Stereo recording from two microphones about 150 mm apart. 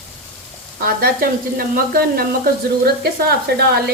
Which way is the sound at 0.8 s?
85° right.